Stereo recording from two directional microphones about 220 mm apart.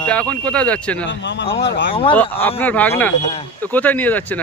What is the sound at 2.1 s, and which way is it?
Speech, 10° left (ahead or behind).